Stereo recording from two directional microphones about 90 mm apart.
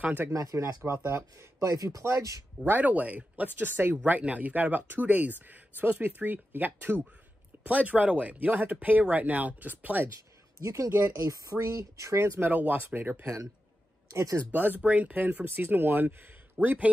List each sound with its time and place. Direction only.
0.0 s speech: 20° right (ahead or behind)
0.3 s speech: 40° right (ahead or behind)
2.7 s speech: 15° right (ahead or behind)
10.6 s speech: 35° right (ahead or behind)
13.2 s speech: 35° right (ahead or behind)
14.5 s speech: 20° right (ahead or behind)